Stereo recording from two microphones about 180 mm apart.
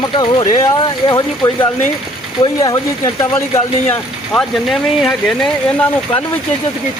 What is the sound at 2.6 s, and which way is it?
Speech, 20° left (ahead or behind).